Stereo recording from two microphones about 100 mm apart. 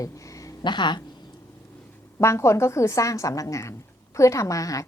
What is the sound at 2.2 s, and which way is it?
A woman's voice, 30° left (ahead or behind).